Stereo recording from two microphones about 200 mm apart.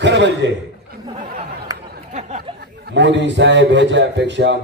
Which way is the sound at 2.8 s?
60° right (ahead or behind).